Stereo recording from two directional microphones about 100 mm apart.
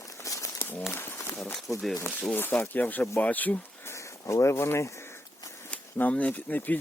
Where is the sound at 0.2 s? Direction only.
35° left (ahead or behind).